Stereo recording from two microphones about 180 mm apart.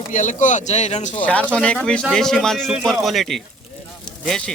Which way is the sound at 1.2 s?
5° left (ahead or behind).